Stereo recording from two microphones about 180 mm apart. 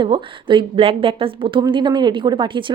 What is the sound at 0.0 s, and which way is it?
A woman's voice, 25° right (ahead or behind).